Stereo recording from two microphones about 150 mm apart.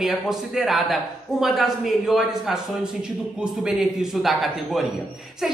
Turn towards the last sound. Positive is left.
turn(degrees=0)  # may be behind; listen again after turning